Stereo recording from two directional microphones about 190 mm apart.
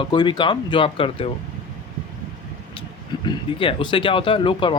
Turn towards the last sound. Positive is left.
turn(degrees=25)  # may be behind; listen again after turning